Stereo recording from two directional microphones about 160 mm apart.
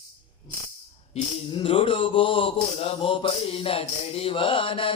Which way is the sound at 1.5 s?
30° left (ahead or behind).